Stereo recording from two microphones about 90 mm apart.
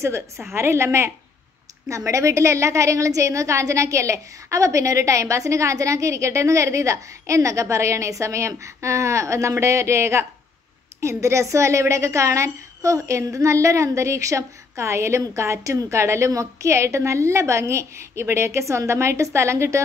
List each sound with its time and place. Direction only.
0.5 s a woman's voice: 30° right (ahead or behind)